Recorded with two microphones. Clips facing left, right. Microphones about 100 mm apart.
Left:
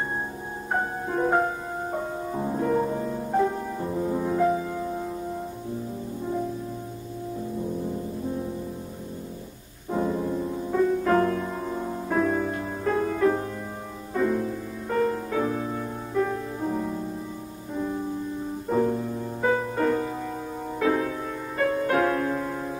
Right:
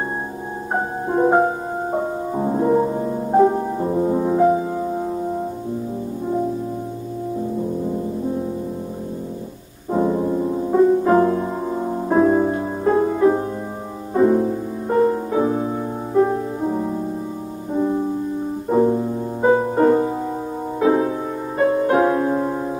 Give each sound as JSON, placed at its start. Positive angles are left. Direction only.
{"t": 0.7, "sound": "music", "side_deg": -25}
{"t": 9.8, "sound": "music", "side_deg": -25}